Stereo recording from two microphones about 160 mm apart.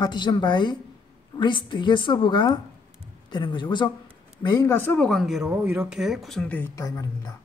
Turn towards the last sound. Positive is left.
turn(degrees=20)  # may be behind; listen again after turning